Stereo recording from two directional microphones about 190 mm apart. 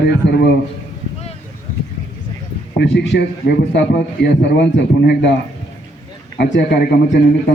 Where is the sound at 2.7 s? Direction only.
65° left (ahead or behind).